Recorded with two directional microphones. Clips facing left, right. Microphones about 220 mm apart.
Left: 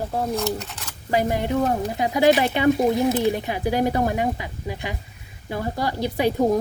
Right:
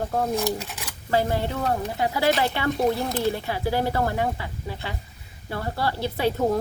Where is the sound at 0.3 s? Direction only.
15° right (ahead or behind).